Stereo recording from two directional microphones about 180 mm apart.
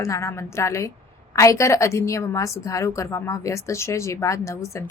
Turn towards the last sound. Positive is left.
turn(degrees=15)  # may be behind; listen again after turning